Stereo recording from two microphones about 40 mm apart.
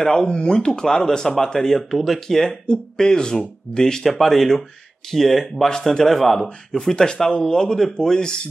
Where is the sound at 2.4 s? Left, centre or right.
Centre.